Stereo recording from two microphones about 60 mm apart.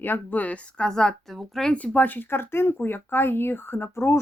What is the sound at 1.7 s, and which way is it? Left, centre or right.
Speech, left.